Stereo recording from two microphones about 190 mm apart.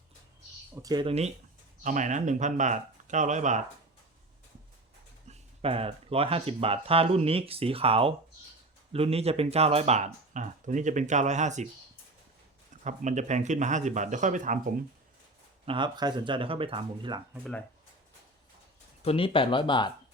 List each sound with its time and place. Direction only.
0.8 s speech: 20° right (ahead or behind)
1.8 s speech: 40° right (ahead or behind)
5.3 s speech: 30° right (ahead or behind)
12.7 s speech: 40° right (ahead or behind)
15.6 s speech: 25° right (ahead or behind)
19.0 s speech: 30° left (ahead or behind)